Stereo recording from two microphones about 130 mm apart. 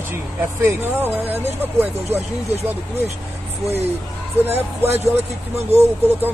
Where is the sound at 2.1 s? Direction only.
55° right (ahead or behind).